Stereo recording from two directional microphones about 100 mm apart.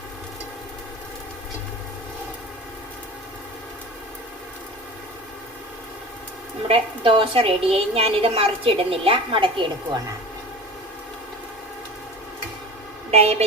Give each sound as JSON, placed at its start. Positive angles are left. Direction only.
{"t": 6.7, "sound": "a woman's voice", "side_deg": -60}
{"t": 13.1, "sound": "vehicle", "side_deg": -90}